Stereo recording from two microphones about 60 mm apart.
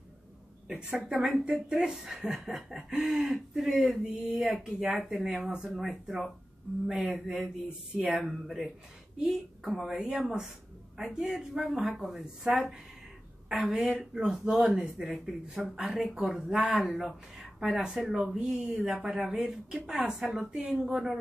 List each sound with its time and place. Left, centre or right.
0.7 s a sound: centre
1.5 s speech: centre
2.7 s speech: centre
3.1 s speech: centre
5.5 s speech: centre
5.8 s a woman's voice: centre